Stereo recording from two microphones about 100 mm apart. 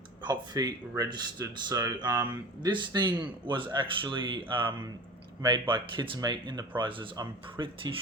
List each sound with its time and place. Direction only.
0.2 s speech: 45° right (ahead or behind)
6.1 s speech: 45° right (ahead or behind)
7.6 s speech: 45° right (ahead or behind)